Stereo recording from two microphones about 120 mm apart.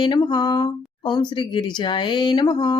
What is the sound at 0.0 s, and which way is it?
Speech, 40° left (ahead or behind).